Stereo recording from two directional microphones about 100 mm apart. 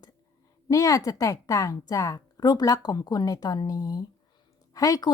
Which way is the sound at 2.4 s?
45° left (ahead or behind).